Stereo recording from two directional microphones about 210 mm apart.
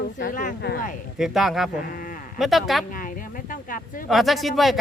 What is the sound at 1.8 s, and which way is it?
Speech, 45° left (ahead or behind).